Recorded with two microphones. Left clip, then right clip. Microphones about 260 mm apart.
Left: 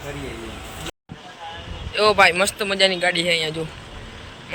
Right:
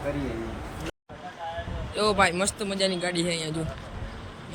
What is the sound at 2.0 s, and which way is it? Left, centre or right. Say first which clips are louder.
A man's voice: left 8 dB; centre.